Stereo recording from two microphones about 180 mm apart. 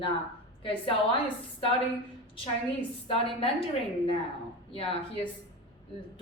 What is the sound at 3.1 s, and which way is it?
Speech, 30° left (ahead or behind).